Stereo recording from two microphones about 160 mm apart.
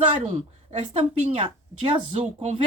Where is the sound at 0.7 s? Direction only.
45° right (ahead or behind).